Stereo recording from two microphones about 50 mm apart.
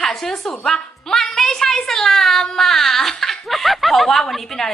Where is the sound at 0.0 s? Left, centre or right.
Centre.